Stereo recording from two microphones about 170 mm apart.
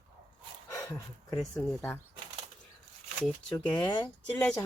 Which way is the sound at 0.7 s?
20° left (ahead or behind).